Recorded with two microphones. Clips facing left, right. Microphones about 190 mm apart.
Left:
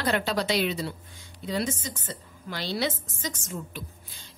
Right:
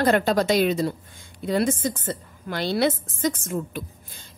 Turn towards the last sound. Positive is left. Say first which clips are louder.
# right 6 dB
turn(degrees=-50)  # may be behind; listen again after turning